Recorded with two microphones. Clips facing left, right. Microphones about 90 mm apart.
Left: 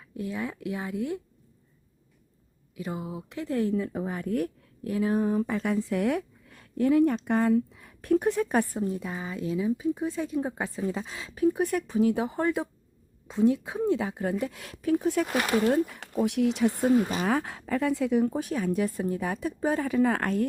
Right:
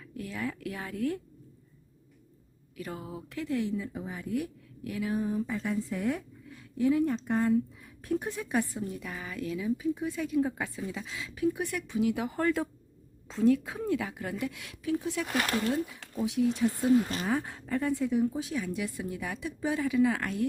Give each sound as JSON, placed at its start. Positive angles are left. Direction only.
{"t": 0.2, "sound": "speech", "side_deg": 20}
{"t": 2.7, "sound": "speech", "side_deg": 20}
{"t": 3.5, "sound": "speech", "side_deg": 45}
{"t": 3.8, "sound": "speech", "side_deg": 55}
{"t": 4.8, "sound": "speech", "side_deg": 35}
{"t": 5.2, "sound": "a woman's voice", "side_deg": 65}
{"t": 8.8, "sound": "speech", "side_deg": 30}
{"t": 15.3, "sound": "speech", "side_deg": 10}
{"t": 15.9, "sound": "speech", "side_deg": 65}
{"t": 17.2, "sound": "speech", "side_deg": 85}